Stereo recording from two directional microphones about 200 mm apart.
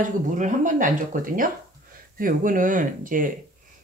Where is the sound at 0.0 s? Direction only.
40° right (ahead or behind).